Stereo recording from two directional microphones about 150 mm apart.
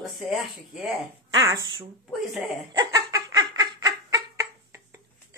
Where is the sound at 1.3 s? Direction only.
25° right (ahead or behind).